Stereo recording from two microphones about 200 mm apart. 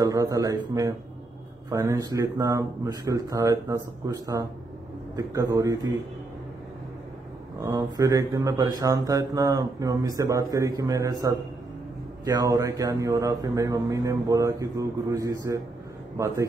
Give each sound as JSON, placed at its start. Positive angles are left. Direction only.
{"t": 0.0, "sound": "speech", "side_deg": -15}
{"t": 7.6, "sound": "speech", "side_deg": -15}